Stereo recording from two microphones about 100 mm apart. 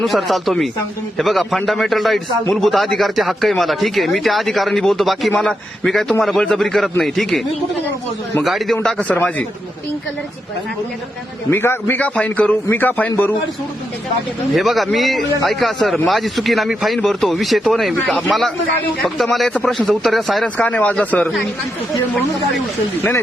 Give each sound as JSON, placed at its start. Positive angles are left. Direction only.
{"t": 0.0, "sound": "a man's voice", "side_deg": 0}
{"t": 8.4, "sound": "a man's voice", "side_deg": 0}
{"t": 11.5, "sound": "a man's voice", "side_deg": 25}
{"t": 11.9, "sound": "a man's voice", "side_deg": 15}
{"t": 14.5, "sound": "a man's voice", "side_deg": 0}
{"t": 20.4, "sound": "speech", "side_deg": 15}